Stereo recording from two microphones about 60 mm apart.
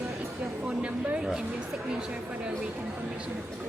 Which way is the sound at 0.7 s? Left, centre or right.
Centre.